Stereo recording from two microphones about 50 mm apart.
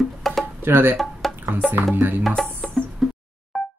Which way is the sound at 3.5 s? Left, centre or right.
Centre.